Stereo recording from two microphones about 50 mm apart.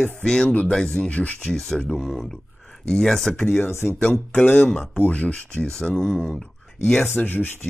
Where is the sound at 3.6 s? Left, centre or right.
Left.